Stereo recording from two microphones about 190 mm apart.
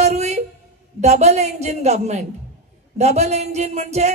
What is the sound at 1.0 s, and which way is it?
Speech, 35° right (ahead or behind).